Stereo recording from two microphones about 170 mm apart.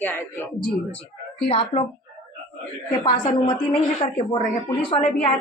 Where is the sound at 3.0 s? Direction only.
30° left (ahead or behind).